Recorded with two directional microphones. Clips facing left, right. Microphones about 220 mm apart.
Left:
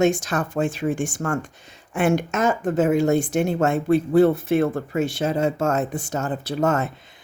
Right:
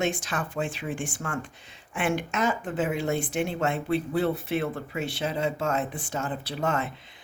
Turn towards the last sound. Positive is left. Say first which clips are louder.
# left 7 dB
turn(degrees=45)  # may be behind; listen again after turning